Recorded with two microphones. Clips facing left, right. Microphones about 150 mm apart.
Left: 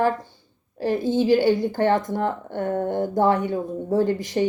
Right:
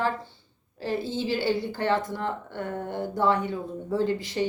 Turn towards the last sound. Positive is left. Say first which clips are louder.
# left 5 dB
turn(degrees=35)  # may be behind; listen again after turning